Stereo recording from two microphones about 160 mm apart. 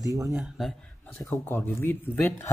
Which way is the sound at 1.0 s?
15° left (ahead or behind).